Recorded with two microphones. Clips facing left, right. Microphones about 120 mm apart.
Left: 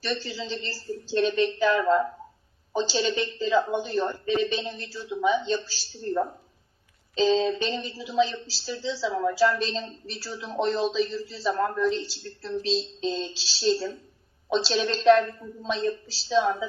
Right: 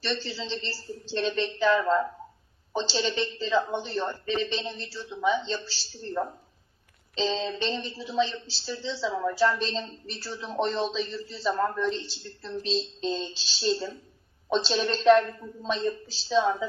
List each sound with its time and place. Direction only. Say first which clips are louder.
0.0 s a woman's voice: left 1 dB; 10° left (ahead or behind)
7.2 s a woman's voice: left 6 dB; 10° left (ahead or behind)